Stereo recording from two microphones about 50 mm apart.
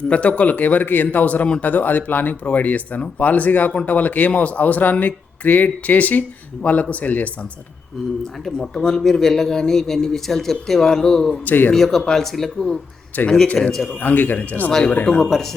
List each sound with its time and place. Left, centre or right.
0.1 s speech: left
8.6 s a man's voice: centre
11.4 s speech: left
11.7 s a man's voice: centre
13.6 s a man's voice: centre
14.0 s speech: left
14.7 s a man's voice: centre
15.2 s a man's voice: centre